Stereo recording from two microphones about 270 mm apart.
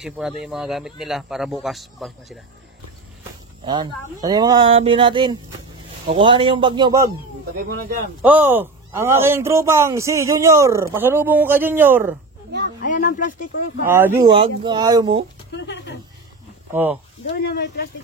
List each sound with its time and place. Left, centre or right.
0.0 s speech: centre
3.6 s a man's voice: centre
8.2 s a man's voice: centre
12.8 s a sound: left
13.8 s a man's voice: centre
15.5 s speech: left
16.7 s a man's voice: centre
17.3 s speech: left